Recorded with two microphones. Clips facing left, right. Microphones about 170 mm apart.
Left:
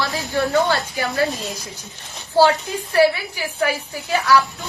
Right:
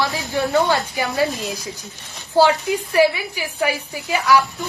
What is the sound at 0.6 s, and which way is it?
Speech, 15° right (ahead or behind).